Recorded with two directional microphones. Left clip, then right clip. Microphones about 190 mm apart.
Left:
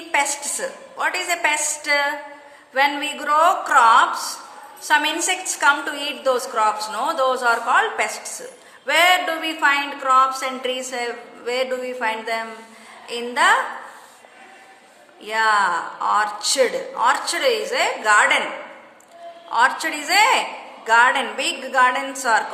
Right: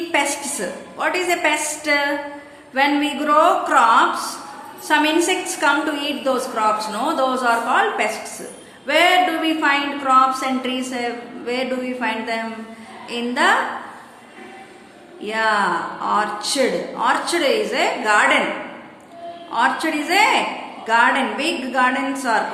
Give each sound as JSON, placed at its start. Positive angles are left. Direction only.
{"t": 0.1, "sound": "a woman's voice", "side_deg": 30}
{"t": 15.2, "sound": "a woman's voice", "side_deg": 40}
{"t": 19.5, "sound": "a woman's voice", "side_deg": 40}